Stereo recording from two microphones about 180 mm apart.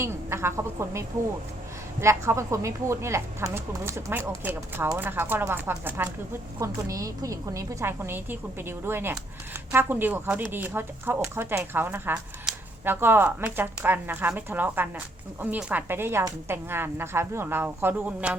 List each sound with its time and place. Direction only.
0.0 s speech: 15° right (ahead or behind)